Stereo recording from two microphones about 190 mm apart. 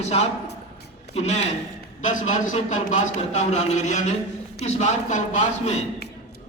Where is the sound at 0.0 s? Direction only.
35° left (ahead or behind).